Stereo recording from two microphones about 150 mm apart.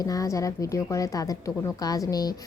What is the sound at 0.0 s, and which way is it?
Speech, 25° left (ahead or behind).